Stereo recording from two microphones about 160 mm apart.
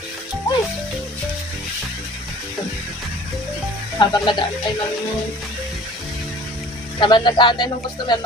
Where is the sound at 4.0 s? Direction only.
30° left (ahead or behind).